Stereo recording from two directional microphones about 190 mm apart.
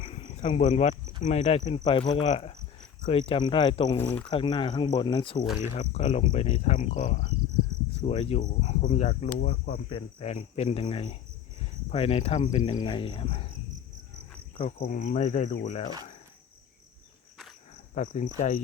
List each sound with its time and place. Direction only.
0.0 s cricket: 30° left (ahead or behind)
1.2 s speech: 35° left (ahead or behind)
3.9 s speech: 10° left (ahead or behind)
4.3 s speech: 25° left (ahead or behind)
9.4 s speech: 50° left (ahead or behind)
9.9 s speech: 30° left (ahead or behind)
14.5 s speech: 35° left (ahead or behind)
17.9 s speech: 40° left (ahead or behind)